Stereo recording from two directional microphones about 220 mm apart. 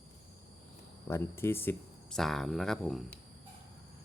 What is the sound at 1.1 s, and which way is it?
Speech, 10° left (ahead or behind).